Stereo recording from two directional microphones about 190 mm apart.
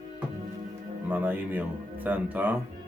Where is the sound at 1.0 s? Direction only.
10° right (ahead or behind).